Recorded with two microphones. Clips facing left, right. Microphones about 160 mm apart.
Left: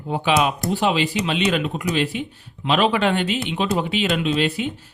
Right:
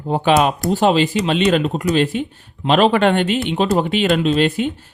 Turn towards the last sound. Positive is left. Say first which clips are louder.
# right 5 dB
turn(degrees=-50)  # may be behind; listen again after turning